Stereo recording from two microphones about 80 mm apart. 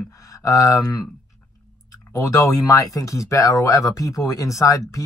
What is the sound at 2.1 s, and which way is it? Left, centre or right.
Speech, left.